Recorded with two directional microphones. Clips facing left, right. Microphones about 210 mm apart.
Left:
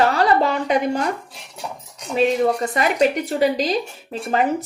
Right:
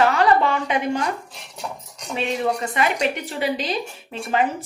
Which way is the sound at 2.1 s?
40° left (ahead or behind).